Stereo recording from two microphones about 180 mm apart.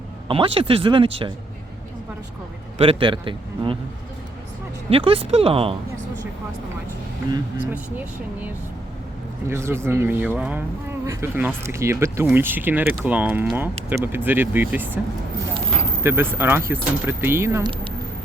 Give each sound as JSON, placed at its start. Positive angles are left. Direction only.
{"t": 0.3, "sound": "speech", "side_deg": -30}
{"t": 2.7, "sound": "speech", "side_deg": -30}
{"t": 4.9, "sound": "speech", "side_deg": -30}
{"t": 7.6, "sound": "speech", "side_deg": -10}
{"t": 9.5, "sound": "speech", "side_deg": -15}
{"t": 16.0, "sound": "speech", "side_deg": -15}